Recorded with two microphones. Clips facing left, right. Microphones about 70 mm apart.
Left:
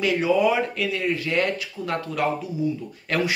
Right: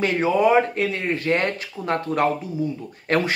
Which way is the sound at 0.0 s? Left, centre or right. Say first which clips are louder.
Right 1 dB; right.